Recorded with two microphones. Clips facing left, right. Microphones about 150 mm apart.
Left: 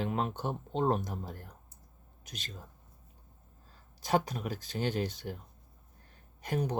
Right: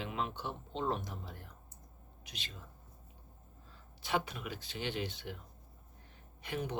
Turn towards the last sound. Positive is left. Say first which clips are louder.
# left 6 dB
turn(degrees=40)  # may be behind; listen again after turning